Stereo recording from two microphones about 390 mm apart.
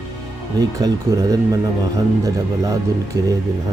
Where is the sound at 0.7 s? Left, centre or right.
Centre.